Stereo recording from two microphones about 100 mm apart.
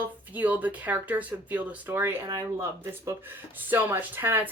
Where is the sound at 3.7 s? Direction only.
20° right (ahead or behind).